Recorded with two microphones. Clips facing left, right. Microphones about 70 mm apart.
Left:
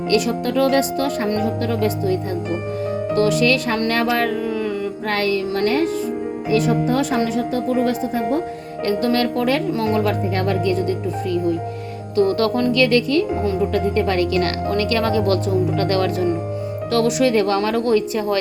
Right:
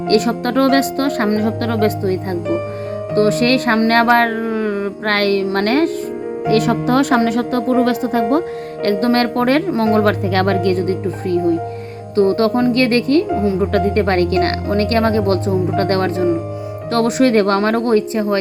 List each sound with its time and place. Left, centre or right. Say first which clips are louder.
0.1 s speech: right 4 dB; right
3.2 s speech: right 4 dB; right
3.8 s music: right 7 dB; right
5.0 s speech: right 5 dB; right
9.0 s a woman's voice: right 3 dB; right
10.2 s speech: right 4 dB; right
12.1 s speech: right 3 dB; right
12.7 s a woman's voice: right 2 dB; right
13.6 s a woman's voice: right 3 dB; right